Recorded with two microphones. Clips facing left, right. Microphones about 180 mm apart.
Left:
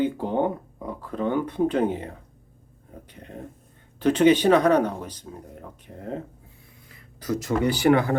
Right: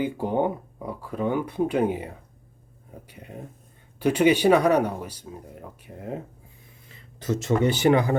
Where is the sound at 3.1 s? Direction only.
10° right (ahead or behind).